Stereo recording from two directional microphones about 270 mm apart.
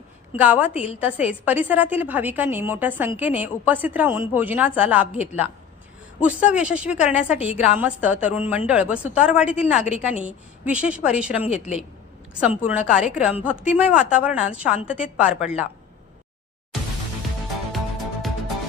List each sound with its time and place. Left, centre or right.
0.3 s a woman's voice: centre
0.7 s speech: left
0.9 s a woman's voice: centre
5.1 s speech: left
6.1 s a woman's voice: centre
9.7 s speech: left
10.2 s a woman's voice: centre
11.4 s speech: left
12.3 s a woman's voice: centre
17.7 s music: centre